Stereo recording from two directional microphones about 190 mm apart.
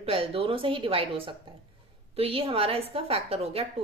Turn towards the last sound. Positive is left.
turn(degrees=-30)  # may be behind; listen again after turning